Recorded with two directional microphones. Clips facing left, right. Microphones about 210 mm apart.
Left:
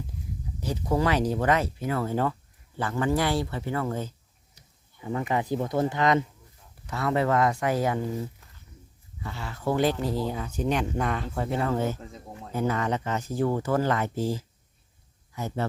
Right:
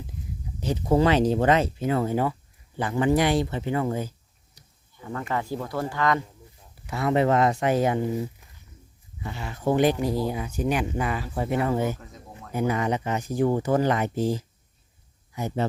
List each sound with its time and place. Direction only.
0.6 s speech: 25° right (ahead or behind)
5.0 s speech: 15° left (ahead or behind)
6.8 s speech: 15° right (ahead or behind)
11.9 s a sound: 25° left (ahead or behind)
12.5 s speech: 15° right (ahead or behind)